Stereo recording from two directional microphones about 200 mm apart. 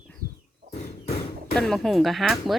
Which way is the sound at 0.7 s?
35° left (ahead or behind).